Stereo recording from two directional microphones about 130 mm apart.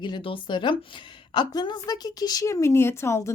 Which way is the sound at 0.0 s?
40° left (ahead or behind).